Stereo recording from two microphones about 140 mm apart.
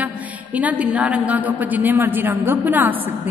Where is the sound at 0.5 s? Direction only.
10° right (ahead or behind).